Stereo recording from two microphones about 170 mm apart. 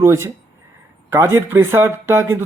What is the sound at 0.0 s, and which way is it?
A man's voice, 15° right (ahead or behind).